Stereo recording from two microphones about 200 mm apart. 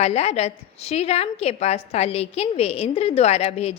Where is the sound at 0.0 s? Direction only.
30° left (ahead or behind).